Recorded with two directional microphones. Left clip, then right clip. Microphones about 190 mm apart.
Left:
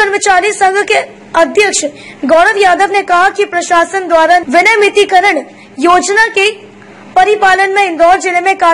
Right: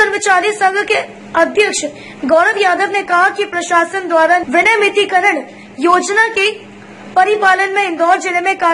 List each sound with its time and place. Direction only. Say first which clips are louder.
0.0 s a woman's voice: left 3 dB; 15° left (ahead or behind)